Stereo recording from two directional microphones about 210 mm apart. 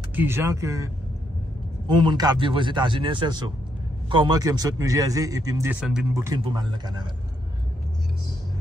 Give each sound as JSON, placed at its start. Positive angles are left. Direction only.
{"t": 0.1, "sound": "a man's voice", "side_deg": -10}
{"t": 1.9, "sound": "a man's voice", "side_deg": -20}
{"t": 6.1, "sound": "a man's voice", "side_deg": -15}